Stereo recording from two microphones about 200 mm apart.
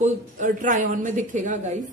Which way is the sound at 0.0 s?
40° right (ahead or behind).